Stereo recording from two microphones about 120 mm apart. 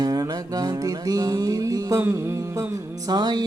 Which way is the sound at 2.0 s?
25° right (ahead or behind).